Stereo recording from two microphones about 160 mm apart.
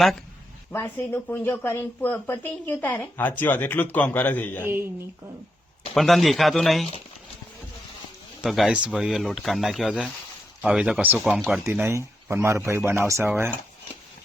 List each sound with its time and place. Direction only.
0.7 s speech: 15° left (ahead or behind)
4.6 s speech: 15° right (ahead or behind)
5.9 s speech: centre (ahead or behind)
8.4 s speech: centre (ahead or behind)
11.6 s speech: 15° right (ahead or behind)